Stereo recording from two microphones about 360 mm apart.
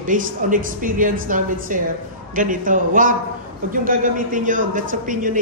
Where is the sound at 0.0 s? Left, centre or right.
Right.